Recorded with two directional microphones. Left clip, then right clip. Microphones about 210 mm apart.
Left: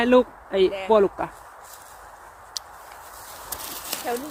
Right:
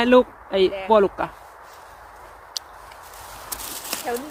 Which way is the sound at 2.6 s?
10° right (ahead or behind).